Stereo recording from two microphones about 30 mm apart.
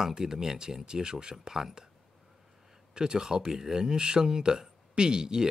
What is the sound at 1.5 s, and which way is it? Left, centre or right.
Speech, centre.